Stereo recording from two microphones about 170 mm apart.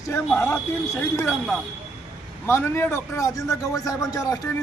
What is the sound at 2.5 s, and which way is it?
A man's voice, 15° left (ahead or behind).